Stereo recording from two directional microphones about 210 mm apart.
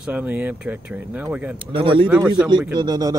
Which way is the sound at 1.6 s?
25° right (ahead or behind).